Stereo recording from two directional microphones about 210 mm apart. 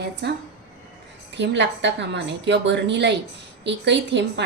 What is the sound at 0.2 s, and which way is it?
A woman's voice, 50° right (ahead or behind).